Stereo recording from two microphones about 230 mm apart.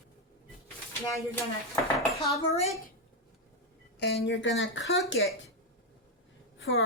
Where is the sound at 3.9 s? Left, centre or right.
Left.